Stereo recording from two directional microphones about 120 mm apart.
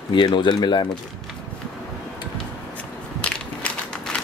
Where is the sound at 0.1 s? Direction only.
40° left (ahead or behind).